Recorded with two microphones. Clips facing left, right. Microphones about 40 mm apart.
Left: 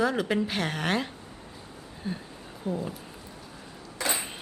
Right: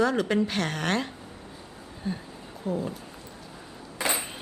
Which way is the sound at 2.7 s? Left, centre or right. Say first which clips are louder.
Right 2 dB; centre.